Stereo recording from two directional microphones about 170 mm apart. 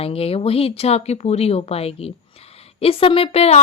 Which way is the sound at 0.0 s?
35° left (ahead or behind).